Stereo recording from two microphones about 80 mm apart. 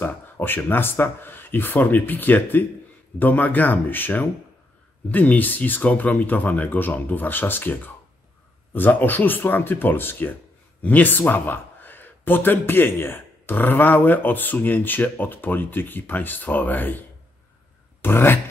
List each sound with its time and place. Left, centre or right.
0.0 s speech: left
18.0 s speech: left